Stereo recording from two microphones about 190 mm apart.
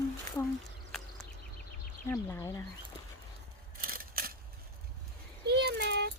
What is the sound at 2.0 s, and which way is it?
Speech, 15° left (ahead or behind).